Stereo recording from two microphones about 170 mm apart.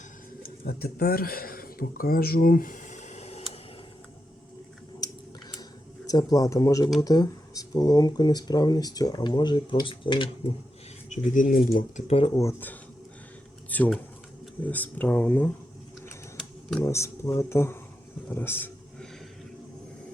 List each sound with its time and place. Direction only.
0.4 s speech: 65° left (ahead or behind); by 3.4 s 40° left (ahead or behind)
6.1 s speech: 20° left (ahead or behind)
11.1 s speech: 50° left (ahead or behind)
12.0 s speech: 30° left (ahead or behind)
12.4 s speech: 15° left (ahead or behind)
16.8 s speech: 15° left (ahead or behind)
18.3 s a sound: 10° left (ahead or behind)